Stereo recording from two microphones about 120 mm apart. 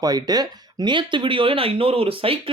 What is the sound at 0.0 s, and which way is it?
Speech, 30° right (ahead or behind).